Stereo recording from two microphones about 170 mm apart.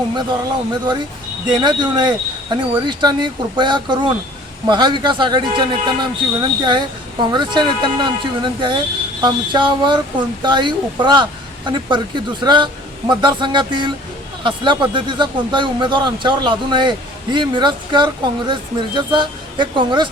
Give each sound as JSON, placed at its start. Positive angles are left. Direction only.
{"t": 1.5, "sound": "speech", "side_deg": -25}